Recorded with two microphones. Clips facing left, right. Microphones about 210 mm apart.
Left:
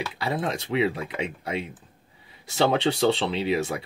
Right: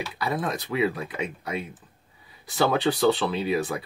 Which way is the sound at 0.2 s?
25° left (ahead or behind).